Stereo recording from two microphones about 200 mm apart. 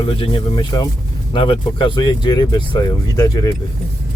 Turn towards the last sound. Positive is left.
turn(degrees=20)  # may be behind; listen again after turning